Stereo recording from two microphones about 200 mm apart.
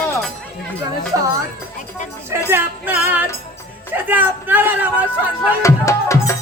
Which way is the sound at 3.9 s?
10° right (ahead or behind).